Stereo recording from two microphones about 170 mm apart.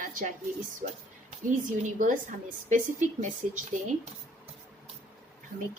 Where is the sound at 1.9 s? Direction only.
50° right (ahead or behind).